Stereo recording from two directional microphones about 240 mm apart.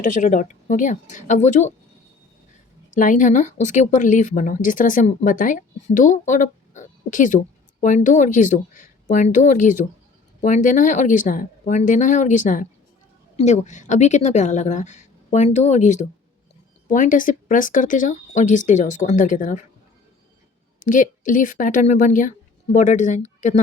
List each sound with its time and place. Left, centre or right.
0.0 s speech: left
2.9 s a woman's voice: left
20.7 s speech: left